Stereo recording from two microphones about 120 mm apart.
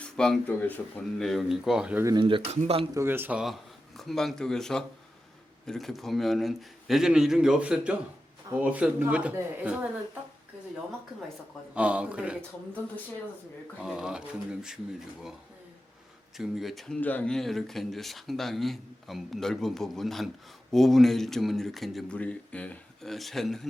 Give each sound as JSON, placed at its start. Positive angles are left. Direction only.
{"t": 0.0, "sound": "speech", "side_deg": 10}
{"t": 1.2, "sound": "speech", "side_deg": 0}
{"t": 2.1, "sound": "speech", "side_deg": -45}
{"t": 2.5, "sound": "speech", "side_deg": -60}
{"t": 2.9, "sound": "speech", "side_deg": -20}
{"t": 3.4, "sound": "speech", "side_deg": 0}
{"t": 11.7, "sound": "speech", "side_deg": -10}
{"t": 13.7, "sound": "speech", "side_deg": -5}
{"t": 16.4, "sound": "speech", "side_deg": 0}
{"t": 17.0, "sound": "speech", "side_deg": 15}
{"t": 22.2, "sound": "speech", "side_deg": 10}